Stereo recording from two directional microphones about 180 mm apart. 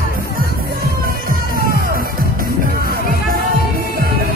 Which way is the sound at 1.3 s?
55° right (ahead or behind).